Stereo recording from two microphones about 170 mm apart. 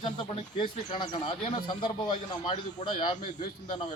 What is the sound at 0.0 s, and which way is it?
Speech, 25° left (ahead or behind).